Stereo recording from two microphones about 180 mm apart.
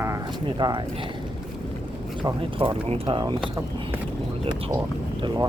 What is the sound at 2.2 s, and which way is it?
Speech, 30° right (ahead or behind).